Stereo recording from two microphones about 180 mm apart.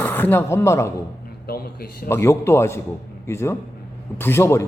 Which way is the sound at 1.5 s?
55° left (ahead or behind).